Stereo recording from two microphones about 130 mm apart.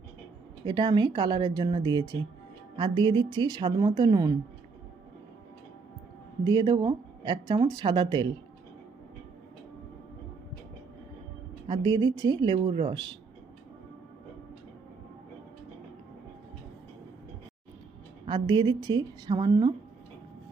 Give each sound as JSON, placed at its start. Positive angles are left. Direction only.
{"t": 0.6, "sound": "speech", "side_deg": -35}
{"t": 6.4, "sound": "speech", "side_deg": -35}
{"t": 11.7, "sound": "speech", "side_deg": -35}
{"t": 18.3, "sound": "speech", "side_deg": -35}